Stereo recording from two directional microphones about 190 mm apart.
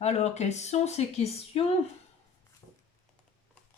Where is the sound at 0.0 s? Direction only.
35° left (ahead or behind).